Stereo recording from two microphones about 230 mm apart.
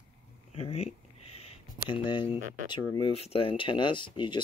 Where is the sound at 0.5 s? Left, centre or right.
Left.